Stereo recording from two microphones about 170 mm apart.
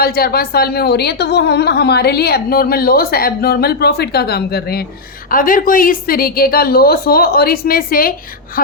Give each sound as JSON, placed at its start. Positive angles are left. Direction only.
{"t": 0.0, "sound": "a woman's voice", "side_deg": 65}
{"t": 5.3, "sound": "a woman's voice", "side_deg": 55}